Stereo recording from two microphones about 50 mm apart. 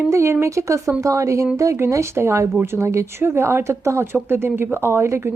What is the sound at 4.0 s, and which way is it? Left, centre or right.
Speech, right.